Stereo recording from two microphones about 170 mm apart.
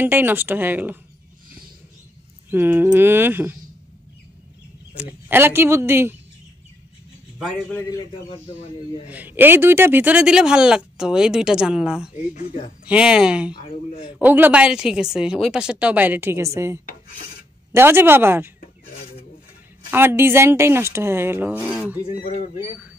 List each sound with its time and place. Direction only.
0.0 s speech: 10° right (ahead or behind)
2.5 s speech: 10° right (ahead or behind)
4.9 s speech: 10° right (ahead or behind)
7.3 s speech: centre (ahead or behind)
8.1 s speech: 35° left (ahead or behind)
9.0 s speech: 10° right (ahead or behind)
13.5 s a man's voice: 30° left (ahead or behind)
14.0 s speech: 10° right (ahead or behind)
19.9 s speech: 15° right (ahead or behind)